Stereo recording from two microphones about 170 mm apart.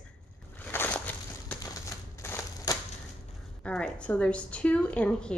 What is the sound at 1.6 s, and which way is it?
Typewriter, 20° left (ahead or behind).